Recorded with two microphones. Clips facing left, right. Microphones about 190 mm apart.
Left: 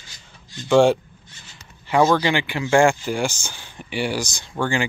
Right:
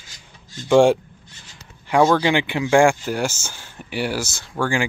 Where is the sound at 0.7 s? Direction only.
10° right (ahead or behind).